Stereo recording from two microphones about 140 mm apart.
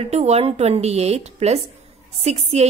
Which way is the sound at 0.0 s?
50° right (ahead or behind).